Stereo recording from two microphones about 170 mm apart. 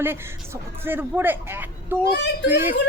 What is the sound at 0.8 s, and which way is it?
Speech, 10° right (ahead or behind).